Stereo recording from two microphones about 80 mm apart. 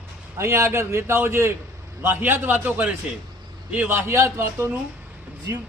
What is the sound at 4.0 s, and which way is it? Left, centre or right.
Speech, right.